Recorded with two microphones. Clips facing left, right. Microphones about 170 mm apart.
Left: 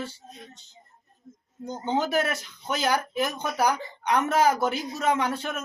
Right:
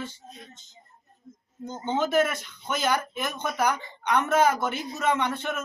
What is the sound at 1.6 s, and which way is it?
A man's voice, 35° left (ahead or behind).